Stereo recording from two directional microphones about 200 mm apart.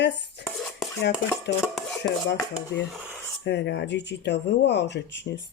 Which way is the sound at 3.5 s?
60° left (ahead or behind).